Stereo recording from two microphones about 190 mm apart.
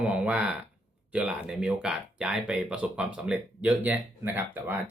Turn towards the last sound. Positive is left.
turn(degrees=-10)  # may be behind; listen again after turning